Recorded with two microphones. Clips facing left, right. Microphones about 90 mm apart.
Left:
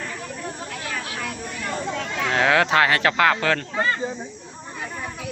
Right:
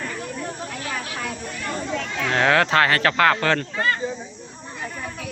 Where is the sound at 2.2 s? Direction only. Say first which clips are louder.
Even; 5° left (ahead or behind).